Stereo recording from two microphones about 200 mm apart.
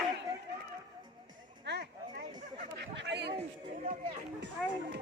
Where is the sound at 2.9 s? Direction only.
60° right (ahead or behind).